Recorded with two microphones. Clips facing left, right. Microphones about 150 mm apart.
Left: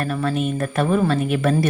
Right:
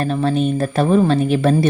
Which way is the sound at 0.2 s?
30° right (ahead or behind).